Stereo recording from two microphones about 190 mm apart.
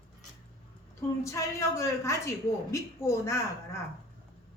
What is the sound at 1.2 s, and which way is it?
A woman's voice, 15° left (ahead or behind).